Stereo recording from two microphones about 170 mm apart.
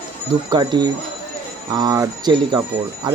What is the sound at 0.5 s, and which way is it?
Speech, 25° right (ahead or behind).